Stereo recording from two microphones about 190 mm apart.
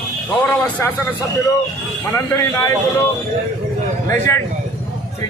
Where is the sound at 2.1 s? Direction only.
15° left (ahead or behind).